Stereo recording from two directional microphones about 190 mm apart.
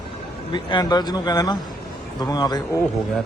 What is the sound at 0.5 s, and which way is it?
Speech, 20° left (ahead or behind).